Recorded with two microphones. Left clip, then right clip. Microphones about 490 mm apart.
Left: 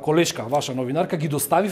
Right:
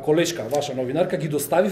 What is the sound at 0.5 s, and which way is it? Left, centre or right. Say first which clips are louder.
Speech: right 1 dB; left.